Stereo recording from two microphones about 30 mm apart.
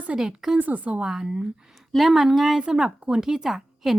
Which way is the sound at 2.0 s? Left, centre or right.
Centre.